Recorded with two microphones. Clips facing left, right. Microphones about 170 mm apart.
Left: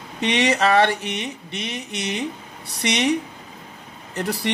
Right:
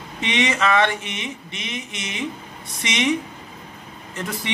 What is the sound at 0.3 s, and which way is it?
A man's voice, 35° left (ahead or behind).